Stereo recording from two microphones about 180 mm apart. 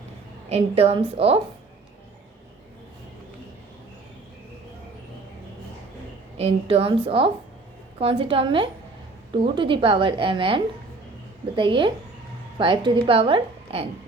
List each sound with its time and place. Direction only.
0.5 s a woman's voice: 35° right (ahead or behind)
6.3 s a woman's voice: 35° right (ahead or behind)